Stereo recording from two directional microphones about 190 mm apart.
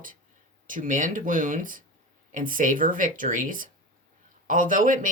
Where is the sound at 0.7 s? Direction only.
45° right (ahead or behind).